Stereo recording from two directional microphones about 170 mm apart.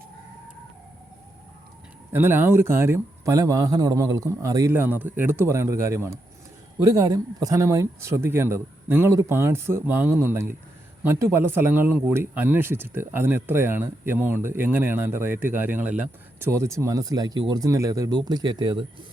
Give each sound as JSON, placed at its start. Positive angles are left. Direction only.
{"t": 2.1, "sound": "a man's voice", "side_deg": -10}